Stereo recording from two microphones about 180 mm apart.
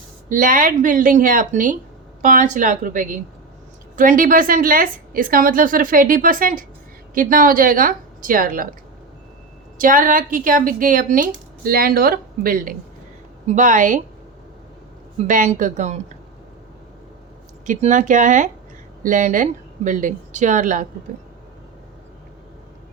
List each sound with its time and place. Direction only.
0.3 s a woman's voice: 50° right (ahead or behind)
9.7 s a woman's voice: 50° right (ahead or behind)
15.2 s a woman's voice: 40° right (ahead or behind)
17.7 s a woman's voice: 45° right (ahead or behind)